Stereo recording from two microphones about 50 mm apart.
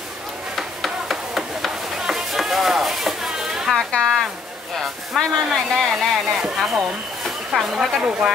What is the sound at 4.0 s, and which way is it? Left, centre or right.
Speech, centre.